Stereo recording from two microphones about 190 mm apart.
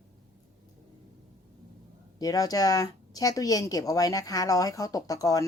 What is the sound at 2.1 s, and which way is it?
Speech, 20° left (ahead or behind).